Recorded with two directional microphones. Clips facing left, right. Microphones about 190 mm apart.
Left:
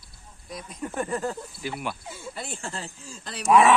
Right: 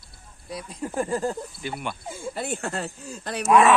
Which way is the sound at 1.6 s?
Centre (ahead or behind).